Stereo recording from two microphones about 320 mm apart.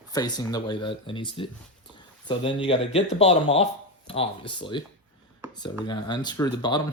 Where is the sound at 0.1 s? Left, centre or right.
Centre.